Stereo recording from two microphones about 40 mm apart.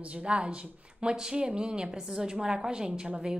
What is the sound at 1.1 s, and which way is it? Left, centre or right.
A woman's voice, centre.